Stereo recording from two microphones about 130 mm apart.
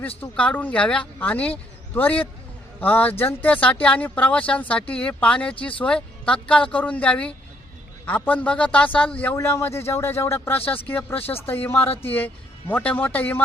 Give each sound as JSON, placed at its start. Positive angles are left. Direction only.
{"t": 0.2, "sound": "a man's voice", "side_deg": 10}